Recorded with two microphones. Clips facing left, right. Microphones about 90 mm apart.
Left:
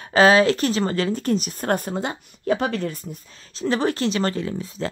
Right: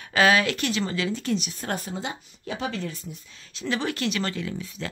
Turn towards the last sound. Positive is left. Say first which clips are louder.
# left 5 dB
turn(degrees=35)  # may be behind; listen again after turning